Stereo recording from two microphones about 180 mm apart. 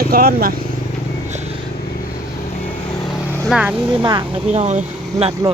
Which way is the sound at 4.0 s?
25° right (ahead or behind).